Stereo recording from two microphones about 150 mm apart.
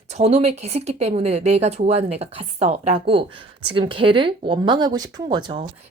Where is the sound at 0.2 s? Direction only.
45° right (ahead or behind); by 5.5 s 30° right (ahead or behind).